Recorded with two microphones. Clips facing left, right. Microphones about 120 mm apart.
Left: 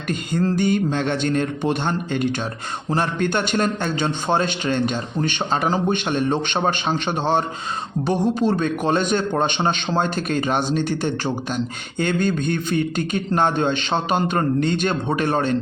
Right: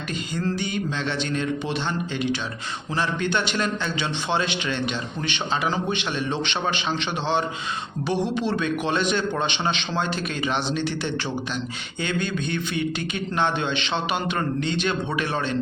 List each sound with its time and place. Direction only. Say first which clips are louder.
0.1 s a man's voice: left 6 dB; 50° left (ahead or behind)